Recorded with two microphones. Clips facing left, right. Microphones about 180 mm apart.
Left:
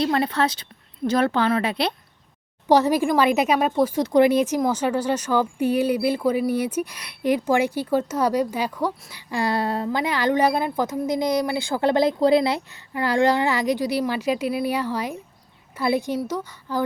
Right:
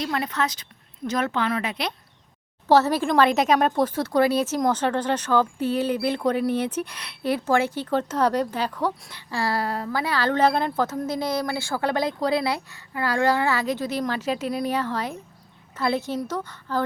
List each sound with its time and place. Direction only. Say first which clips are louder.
0.0 s speech: left 5 dB; 30° left (ahead or behind)
2.6 s speech: left 1 dB; 15° left (ahead or behind)